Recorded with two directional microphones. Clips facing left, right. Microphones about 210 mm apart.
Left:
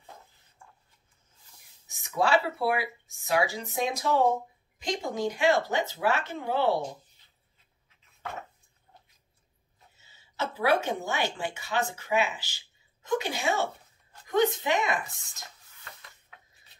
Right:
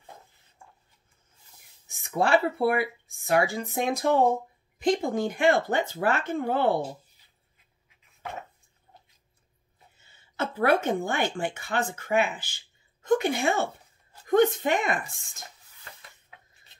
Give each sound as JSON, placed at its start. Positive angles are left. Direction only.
{"t": 1.9, "sound": "speech", "side_deg": -55}
{"t": 6.8, "sound": "a sound", "side_deg": -5}
{"t": 9.9, "sound": "speech", "side_deg": -55}